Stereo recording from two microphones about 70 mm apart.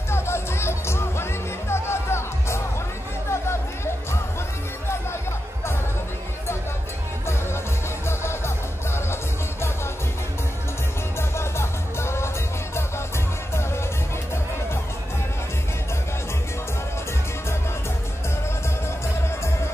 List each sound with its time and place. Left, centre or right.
0.1 s music: left
8.1 s music: left
11.1 s music: left